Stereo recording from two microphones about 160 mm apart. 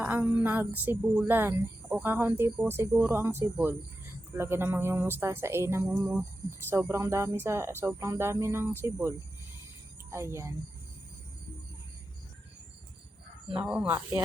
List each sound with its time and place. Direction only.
0.0 s a woman's voice: 10° right (ahead or behind)
13.5 s a woman's voice: 10° right (ahead or behind)